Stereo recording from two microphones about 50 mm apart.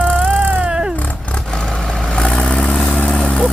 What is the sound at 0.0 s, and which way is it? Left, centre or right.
Music, right.